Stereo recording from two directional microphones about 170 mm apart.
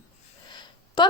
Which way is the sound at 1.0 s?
25° left (ahead or behind).